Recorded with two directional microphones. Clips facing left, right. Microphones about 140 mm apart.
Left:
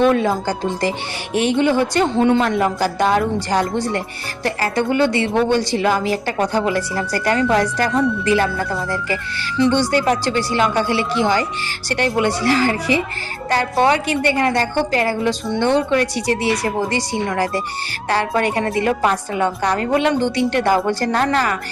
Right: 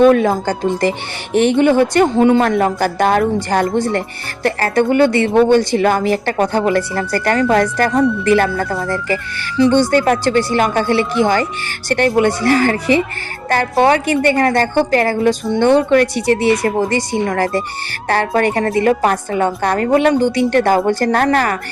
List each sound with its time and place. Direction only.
0.0 s a woman's voice: 55° right (ahead or behind)
9.7 s a woman's voice: 50° right (ahead or behind)